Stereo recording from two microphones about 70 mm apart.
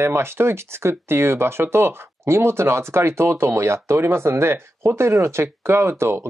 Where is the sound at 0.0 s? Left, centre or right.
Right.